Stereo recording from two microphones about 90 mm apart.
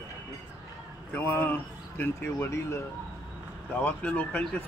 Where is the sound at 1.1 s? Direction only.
20° left (ahead or behind).